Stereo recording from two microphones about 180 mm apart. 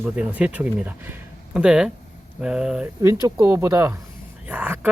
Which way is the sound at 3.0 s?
15° right (ahead or behind).